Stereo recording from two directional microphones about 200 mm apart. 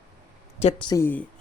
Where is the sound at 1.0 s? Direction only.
10° left (ahead or behind).